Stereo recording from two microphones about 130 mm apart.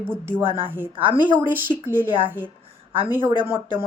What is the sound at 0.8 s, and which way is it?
Speech, 40° right (ahead or behind).